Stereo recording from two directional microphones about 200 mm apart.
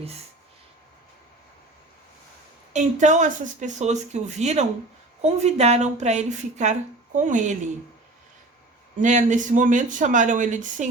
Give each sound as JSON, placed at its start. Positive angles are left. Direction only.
{"t": 2.7, "sound": "speech", "side_deg": -35}
{"t": 9.0, "sound": "speech", "side_deg": -40}